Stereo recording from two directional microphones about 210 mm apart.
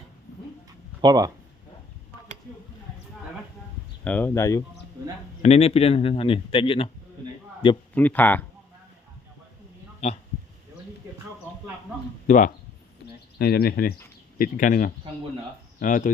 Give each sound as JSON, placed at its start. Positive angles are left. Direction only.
{"t": 1.0, "sound": "speech", "side_deg": -20}
{"t": 4.0, "sound": "speech", "side_deg": 5}
{"t": 5.4, "sound": "a man's voice", "side_deg": 30}
{"t": 7.9, "sound": "speech", "side_deg": 10}
{"t": 10.0, "sound": "speech", "side_deg": 30}
{"t": 12.3, "sound": "speech", "side_deg": 35}
{"t": 13.4, "sound": "speech", "side_deg": 45}